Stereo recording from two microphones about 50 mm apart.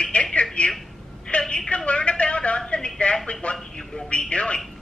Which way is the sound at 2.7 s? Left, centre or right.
Left.